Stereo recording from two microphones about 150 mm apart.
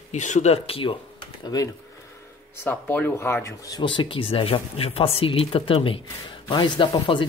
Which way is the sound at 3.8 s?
30° left (ahead or behind).